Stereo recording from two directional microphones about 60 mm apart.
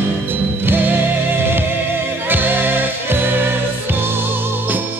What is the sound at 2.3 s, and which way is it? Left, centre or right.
Music, right.